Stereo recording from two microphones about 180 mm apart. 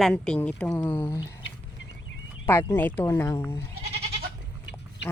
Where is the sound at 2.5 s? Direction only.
10° left (ahead or behind).